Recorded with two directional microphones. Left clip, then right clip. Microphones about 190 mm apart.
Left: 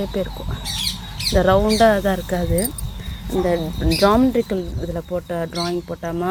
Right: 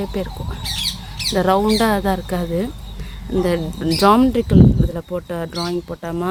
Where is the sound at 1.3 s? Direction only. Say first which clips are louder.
Left 1 dB; 20° right (ahead or behind).